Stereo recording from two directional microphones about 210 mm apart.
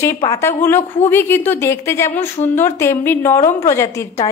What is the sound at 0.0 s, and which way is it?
A woman's voice, 15° left (ahead or behind).